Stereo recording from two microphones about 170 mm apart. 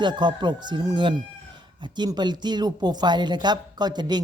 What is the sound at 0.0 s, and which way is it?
A woman's voice, 25° right (ahead or behind).